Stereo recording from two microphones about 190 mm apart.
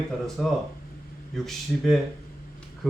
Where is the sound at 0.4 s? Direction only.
Centre (ahead or behind).